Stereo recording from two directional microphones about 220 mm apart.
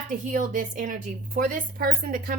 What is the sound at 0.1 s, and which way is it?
A woman's voice, 35° right (ahead or behind).